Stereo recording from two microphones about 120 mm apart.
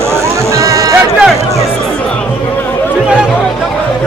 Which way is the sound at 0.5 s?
25° right (ahead or behind).